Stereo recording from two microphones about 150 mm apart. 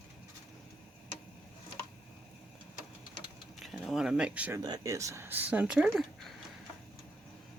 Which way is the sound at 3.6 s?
Centre (ahead or behind).